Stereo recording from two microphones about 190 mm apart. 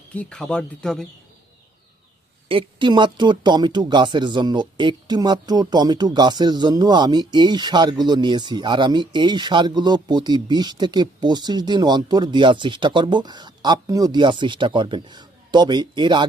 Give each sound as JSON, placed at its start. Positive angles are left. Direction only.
{"t": 0.1, "sound": "speech", "side_deg": 5}
{"t": 2.5, "sound": "speech", "side_deg": -25}